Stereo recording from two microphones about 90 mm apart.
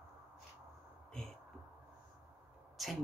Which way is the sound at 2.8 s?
Centre (ahead or behind).